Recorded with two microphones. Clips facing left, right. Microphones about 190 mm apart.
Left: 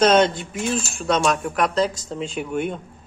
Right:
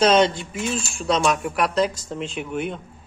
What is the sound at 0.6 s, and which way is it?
Speech, centre (ahead or behind).